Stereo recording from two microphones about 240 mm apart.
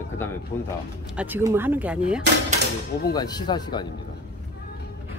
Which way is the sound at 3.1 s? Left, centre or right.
Centre.